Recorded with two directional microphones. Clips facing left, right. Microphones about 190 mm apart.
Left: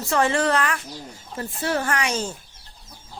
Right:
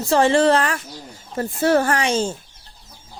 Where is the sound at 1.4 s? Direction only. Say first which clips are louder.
Right 8 dB; 45° right (ahead or behind).